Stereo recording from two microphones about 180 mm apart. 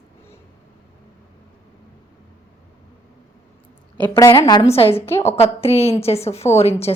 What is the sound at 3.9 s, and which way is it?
Speech, 15° left (ahead or behind).